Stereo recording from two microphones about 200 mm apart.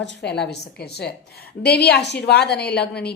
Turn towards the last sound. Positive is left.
turn(degrees=55)  # may be behind; listen again after turning